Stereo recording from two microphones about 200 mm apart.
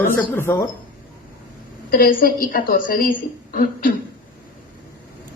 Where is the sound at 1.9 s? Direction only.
45° left (ahead or behind).